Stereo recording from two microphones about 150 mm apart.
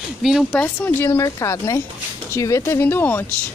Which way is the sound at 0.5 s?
10° left (ahead or behind).